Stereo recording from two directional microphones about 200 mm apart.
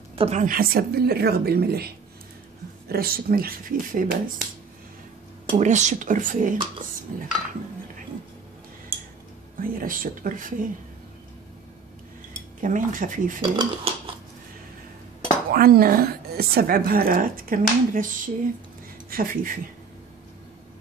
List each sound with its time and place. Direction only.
0.1 s a woman's voice: 35° right (ahead or behind); by 1.9 s 50° right (ahead or behind)
2.9 s a woman's voice: 50° right (ahead or behind)
5.6 s a woman's voice: 35° right (ahead or behind)
9.6 s a woman's voice: 45° right (ahead or behind)
12.5 s speech: 40° right (ahead or behind)
13.4 s speech: 25° right (ahead or behind)
15.5 s a woman's voice: 50° right (ahead or behind)